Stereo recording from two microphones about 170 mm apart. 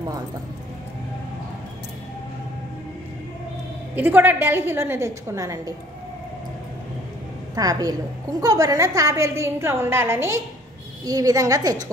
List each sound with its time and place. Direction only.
3.9 s a woman's voice: 10° right (ahead or behind)
7.5 s a woman's voice: 20° right (ahead or behind)